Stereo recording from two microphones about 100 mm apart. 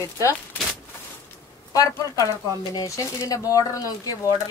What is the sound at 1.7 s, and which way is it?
Speech, 35° left (ahead or behind).